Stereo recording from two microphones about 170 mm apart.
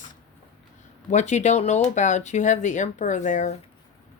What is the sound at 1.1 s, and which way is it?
Speech, 45° left (ahead or behind).